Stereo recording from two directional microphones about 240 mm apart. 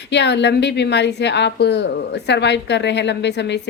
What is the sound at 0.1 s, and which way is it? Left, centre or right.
A woman's voice, left.